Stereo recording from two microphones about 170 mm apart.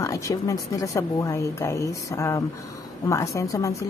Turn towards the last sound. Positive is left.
turn(degrees=20)  # may be behind; listen again after turning